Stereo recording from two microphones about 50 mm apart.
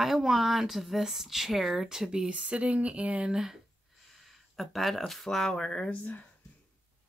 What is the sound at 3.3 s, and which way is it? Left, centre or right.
Speech, centre.